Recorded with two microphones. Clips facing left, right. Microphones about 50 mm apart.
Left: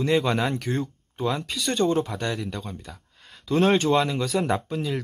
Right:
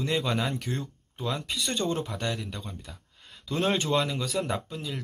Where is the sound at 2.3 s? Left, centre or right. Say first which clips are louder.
Left 5 dB; centre.